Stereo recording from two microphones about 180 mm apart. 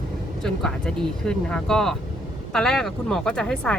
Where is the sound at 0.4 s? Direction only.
5° left (ahead or behind).